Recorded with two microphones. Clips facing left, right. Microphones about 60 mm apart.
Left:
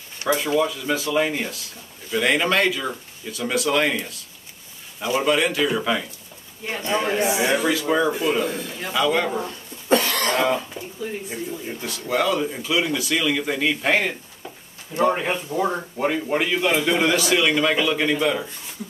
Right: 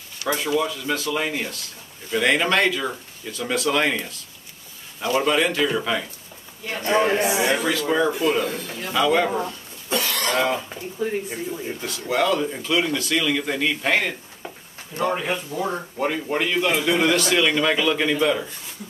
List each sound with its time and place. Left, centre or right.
0.2 s speech: left
0.6 s a man's voice: centre
6.8 s speech: right
7.5 s speech: centre
8.9 s a man's voice: centre
9.8 s cough: left
11.6 s a man's voice: centre
14.9 s speech: left
16.0 s a man's voice: centre